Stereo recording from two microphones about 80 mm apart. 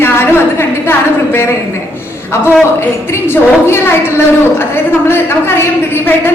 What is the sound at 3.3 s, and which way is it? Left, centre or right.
A woman's voice, left.